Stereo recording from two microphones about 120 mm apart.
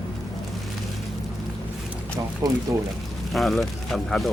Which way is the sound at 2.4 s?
25° right (ahead or behind).